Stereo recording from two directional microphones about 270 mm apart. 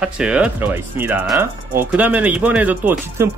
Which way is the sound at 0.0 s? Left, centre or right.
Centre.